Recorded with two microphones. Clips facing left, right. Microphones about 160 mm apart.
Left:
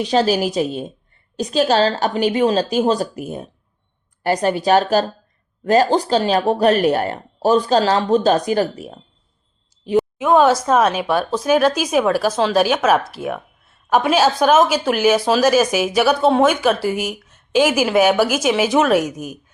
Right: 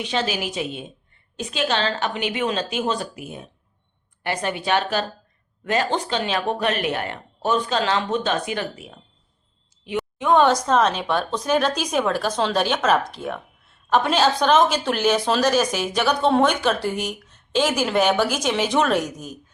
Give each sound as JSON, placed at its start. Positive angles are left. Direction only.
{"t": 0.0, "sound": "speech", "side_deg": 40}
{"t": 10.0, "sound": "speech", "side_deg": 5}